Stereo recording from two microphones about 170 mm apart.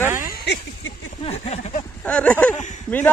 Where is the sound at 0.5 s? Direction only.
85° left.